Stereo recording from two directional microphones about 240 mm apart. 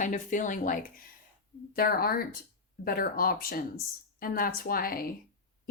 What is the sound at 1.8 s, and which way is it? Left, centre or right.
Speech, left.